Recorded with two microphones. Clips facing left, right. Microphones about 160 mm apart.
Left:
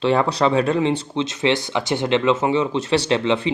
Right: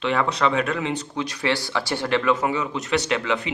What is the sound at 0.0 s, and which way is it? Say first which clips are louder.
Speech: left 4 dB; 35° left (ahead or behind).